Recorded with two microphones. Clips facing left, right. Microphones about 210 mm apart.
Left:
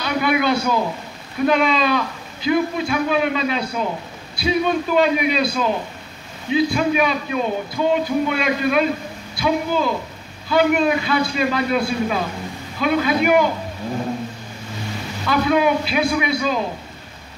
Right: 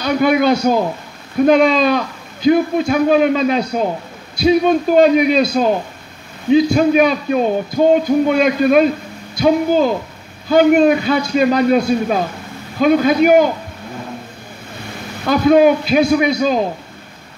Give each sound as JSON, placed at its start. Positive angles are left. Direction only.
{"t": 0.0, "sound": "a man's voice", "side_deg": -45}
{"t": 15.2, "sound": "a man's voice", "side_deg": -45}